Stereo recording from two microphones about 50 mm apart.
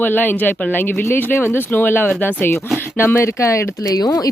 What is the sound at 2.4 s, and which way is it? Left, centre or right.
Speech, left.